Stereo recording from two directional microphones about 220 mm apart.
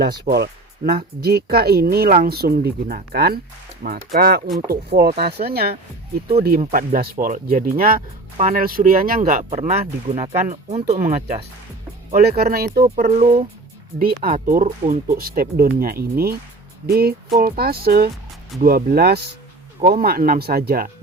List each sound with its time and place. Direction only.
0.3 s speech: 40° right (ahead or behind)
12.1 s speech: 45° right (ahead or behind)